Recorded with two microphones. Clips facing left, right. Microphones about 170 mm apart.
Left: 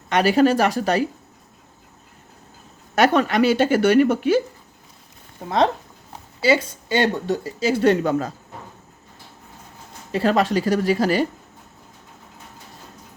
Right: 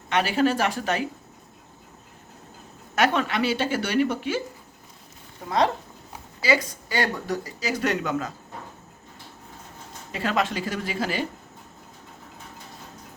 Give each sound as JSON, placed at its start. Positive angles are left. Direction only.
{"t": 0.1, "sound": "speech", "side_deg": 40}
{"t": 2.9, "sound": "speech", "side_deg": 40}
{"t": 6.4, "sound": "speech", "side_deg": 25}
{"t": 10.1, "sound": "speech", "side_deg": 35}